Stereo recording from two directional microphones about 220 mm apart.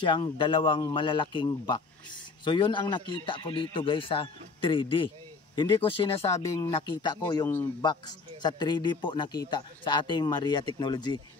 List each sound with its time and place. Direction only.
0.0 s a man's voice: 20° left (ahead or behind)